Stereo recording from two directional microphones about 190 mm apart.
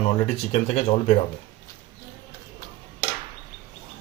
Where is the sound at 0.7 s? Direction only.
35° left (ahead or behind).